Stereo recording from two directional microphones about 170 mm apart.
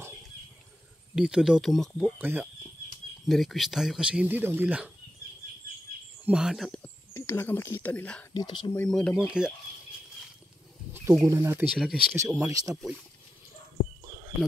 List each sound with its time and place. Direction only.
1.1 s speech: 5° right (ahead or behind)
2.2 s speech: 10° right (ahead or behind)
3.3 s speech: centre (ahead or behind)
6.2 s speech: 5° right (ahead or behind)
6.8 s speech: 15° left (ahead or behind)
8.3 s speech: 25° left (ahead or behind)
8.7 s speech: 5° left (ahead or behind)
11.2 s speech: 15° right (ahead or behind)
11.8 s speech: centre (ahead or behind)
12.4 s speech: 20° right (ahead or behind)